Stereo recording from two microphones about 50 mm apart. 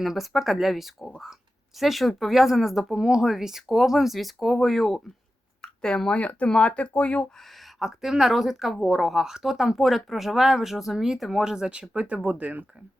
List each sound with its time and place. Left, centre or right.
0.0 s speech: centre
5.6 s speech: centre
6.1 s speech: left
7.3 s speech: centre; by 12.6 s right